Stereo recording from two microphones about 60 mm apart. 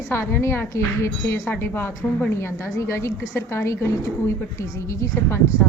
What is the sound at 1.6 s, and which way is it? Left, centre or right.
A woman's voice, left.